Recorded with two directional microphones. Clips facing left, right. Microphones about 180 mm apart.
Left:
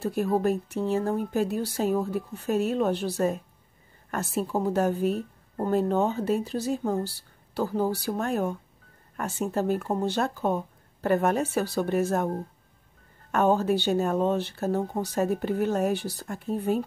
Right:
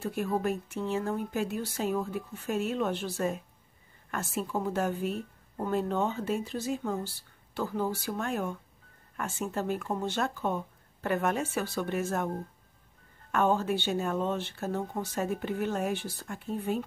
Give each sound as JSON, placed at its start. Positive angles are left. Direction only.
{"t": 0.0, "sound": "speech", "side_deg": 35}
{"t": 13.3, "sound": "speech", "side_deg": 40}